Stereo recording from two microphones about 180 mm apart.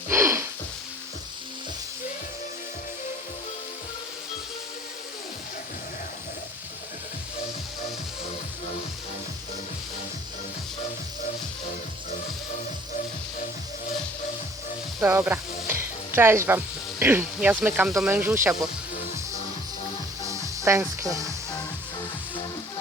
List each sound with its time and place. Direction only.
0.1 s music: 15° right (ahead or behind)
15.0 s speech: 10° right (ahead or behind)
15.6 s music: 15° right (ahead or behind)
17.0 s speech: 10° right (ahead or behind)
20.2 s music: 15° right (ahead or behind)